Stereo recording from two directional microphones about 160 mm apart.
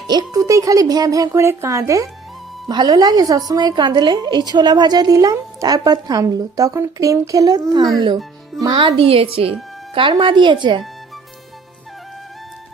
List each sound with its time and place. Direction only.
0.1 s a woman's voice: 25° right (ahead or behind)